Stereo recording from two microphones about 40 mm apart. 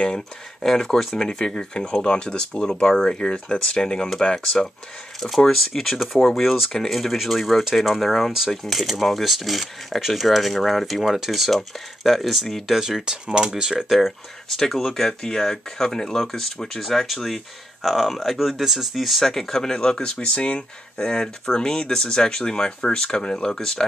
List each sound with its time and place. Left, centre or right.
0.0 s speech: centre
5.8 s speech: centre
12.7 s speech: centre
13.8 s speech: centre